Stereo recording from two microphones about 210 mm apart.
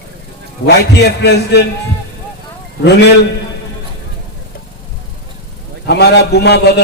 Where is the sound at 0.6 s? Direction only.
50° left (ahead or behind).